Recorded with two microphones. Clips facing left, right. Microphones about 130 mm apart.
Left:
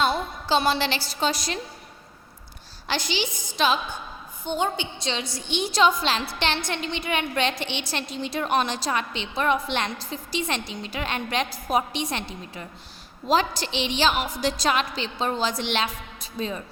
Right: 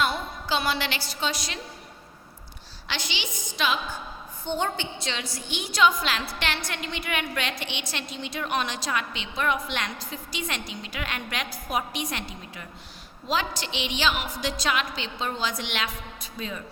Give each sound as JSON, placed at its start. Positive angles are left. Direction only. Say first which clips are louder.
{"t": 0.0, "sound": "a sound", "louder": "left 3 dB", "side_deg": 30}
{"t": 1.2, "sound": "a woman's voice", "louder": "left 5 dB", "side_deg": 40}
{"t": 2.8, "sound": "a woman's voice", "louder": "left 7 dB", "side_deg": 40}
{"t": 4.4, "sound": "a woman's voice", "louder": "left 2 dB", "side_deg": 15}